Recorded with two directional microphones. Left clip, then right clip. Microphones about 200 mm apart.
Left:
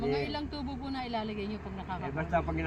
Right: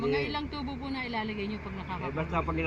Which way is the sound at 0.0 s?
Centre (ahead or behind).